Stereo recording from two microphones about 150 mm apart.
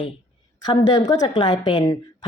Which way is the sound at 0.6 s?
30° left (ahead or behind).